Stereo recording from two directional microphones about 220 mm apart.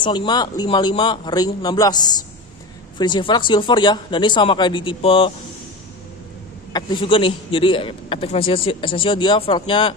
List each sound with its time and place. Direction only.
0.0 s a man's voice: 20° left (ahead or behind)
6.7 s a man's voice: 20° left (ahead or behind)